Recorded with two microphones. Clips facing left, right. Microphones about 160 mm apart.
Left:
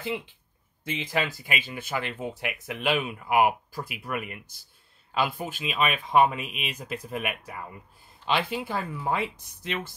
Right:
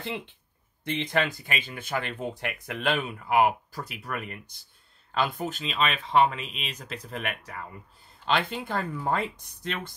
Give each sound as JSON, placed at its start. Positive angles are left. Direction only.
{"t": 0.8, "sound": "speech", "side_deg": 5}